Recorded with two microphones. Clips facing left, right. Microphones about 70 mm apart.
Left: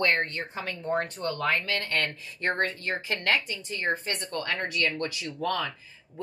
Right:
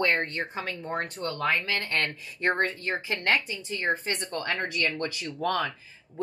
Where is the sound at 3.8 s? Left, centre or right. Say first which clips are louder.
Right 1 dB; centre.